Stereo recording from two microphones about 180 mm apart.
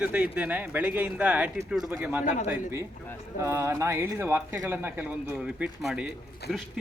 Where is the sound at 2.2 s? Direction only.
45° left (ahead or behind).